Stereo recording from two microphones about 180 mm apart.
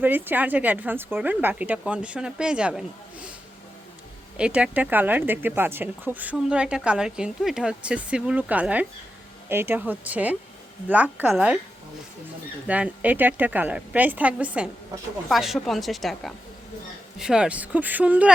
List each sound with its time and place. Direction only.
0.0 s speech: 10° right (ahead or behind)
4.4 s speech: 5° right (ahead or behind)
12.6 s a woman's voice: 10° right (ahead or behind)